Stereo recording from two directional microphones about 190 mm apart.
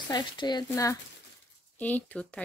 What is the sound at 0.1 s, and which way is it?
Speech, 25° left (ahead or behind).